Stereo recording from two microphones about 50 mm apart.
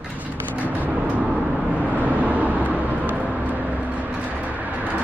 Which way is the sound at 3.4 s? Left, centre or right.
Right.